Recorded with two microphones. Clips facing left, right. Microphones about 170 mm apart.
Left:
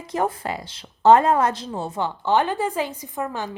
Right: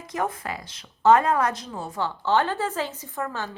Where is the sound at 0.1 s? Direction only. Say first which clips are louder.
Left 4 dB; 30° left (ahead or behind).